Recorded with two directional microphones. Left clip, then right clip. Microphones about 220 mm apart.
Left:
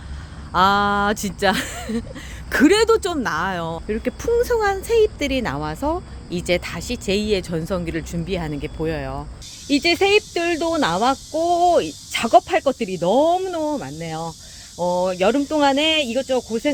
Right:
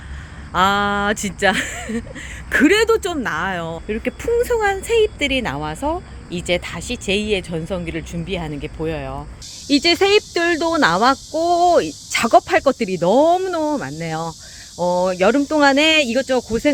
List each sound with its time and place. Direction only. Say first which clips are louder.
0.5 s speech: even; centre (ahead or behind)
9.6 s speech: right 2 dB; 10° right (ahead or behind)